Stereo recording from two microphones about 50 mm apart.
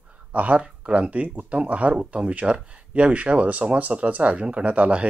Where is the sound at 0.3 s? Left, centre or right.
Right.